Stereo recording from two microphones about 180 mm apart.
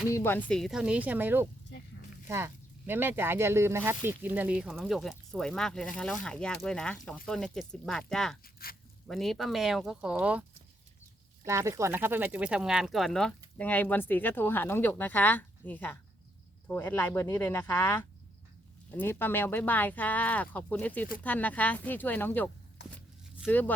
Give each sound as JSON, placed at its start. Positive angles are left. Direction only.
{"t": 0.1, "sound": "speech", "side_deg": 10}
{"t": 1.7, "sound": "a sound", "side_deg": 75}
{"t": 2.2, "sound": "speech", "side_deg": -15}
{"t": 8.6, "sound": "speech", "side_deg": 55}
{"t": 9.0, "sound": "speech", "side_deg": 0}
{"t": 11.4, "sound": "speech", "side_deg": -15}
{"t": 23.5, "sound": "speech", "side_deg": 10}